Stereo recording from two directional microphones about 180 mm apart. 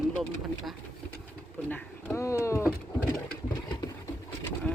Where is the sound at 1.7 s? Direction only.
15° left (ahead or behind).